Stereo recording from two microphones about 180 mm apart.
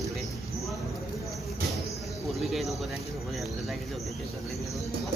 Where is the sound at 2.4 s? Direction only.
Centre (ahead or behind).